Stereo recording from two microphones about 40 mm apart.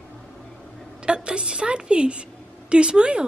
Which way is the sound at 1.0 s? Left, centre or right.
Right.